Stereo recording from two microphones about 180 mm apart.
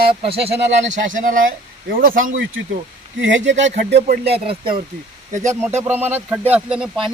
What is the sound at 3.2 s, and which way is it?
Speech, 85° right.